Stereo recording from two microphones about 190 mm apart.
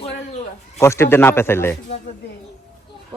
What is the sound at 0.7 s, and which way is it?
A man's voice, 15° left (ahead or behind).